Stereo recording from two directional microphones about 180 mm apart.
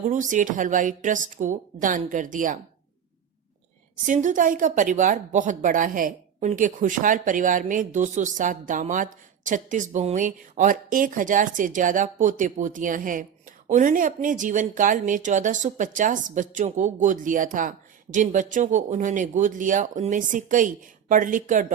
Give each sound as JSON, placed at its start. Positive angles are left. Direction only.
{"t": 0.0, "sound": "a woman's voice", "side_deg": -45}
{"t": 4.0, "sound": "a woman's voice", "side_deg": -45}